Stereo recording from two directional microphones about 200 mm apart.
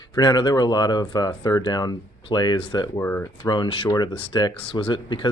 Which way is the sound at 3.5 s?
25° left (ahead or behind).